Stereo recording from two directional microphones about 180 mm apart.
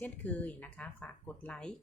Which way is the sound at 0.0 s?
10° left (ahead or behind).